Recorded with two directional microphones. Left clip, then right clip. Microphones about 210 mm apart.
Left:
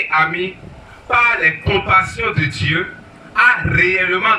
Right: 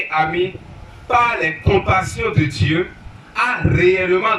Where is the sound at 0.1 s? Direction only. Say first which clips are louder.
Even; 15° right (ahead or behind).